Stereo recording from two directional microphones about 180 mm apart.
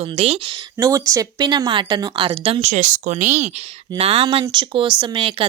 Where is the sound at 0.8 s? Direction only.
15° right (ahead or behind).